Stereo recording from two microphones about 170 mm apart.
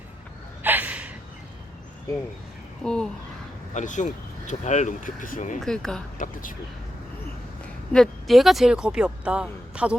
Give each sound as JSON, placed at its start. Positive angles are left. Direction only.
{"t": 0.6, "sound": "gasp", "side_deg": -10}
{"t": 2.8, "sound": "speech", "side_deg": 5}
{"t": 3.8, "sound": "speech", "side_deg": 45}
{"t": 5.5, "sound": "speech", "side_deg": 5}
{"t": 6.1, "sound": "speech", "side_deg": 50}
{"t": 7.9, "sound": "speech", "side_deg": 0}